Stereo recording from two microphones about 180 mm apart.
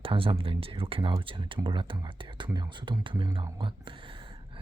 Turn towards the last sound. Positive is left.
turn(degrees=-25)  # may be behind; listen again after turning